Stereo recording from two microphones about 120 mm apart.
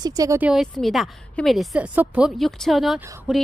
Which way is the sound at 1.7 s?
10° right (ahead or behind).